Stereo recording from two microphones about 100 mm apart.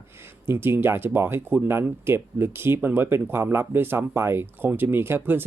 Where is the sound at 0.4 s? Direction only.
20° right (ahead or behind).